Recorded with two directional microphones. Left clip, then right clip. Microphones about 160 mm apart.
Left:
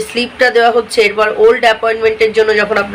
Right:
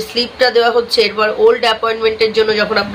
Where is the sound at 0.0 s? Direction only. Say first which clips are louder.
Left 2 dB; 25° left (ahead or behind).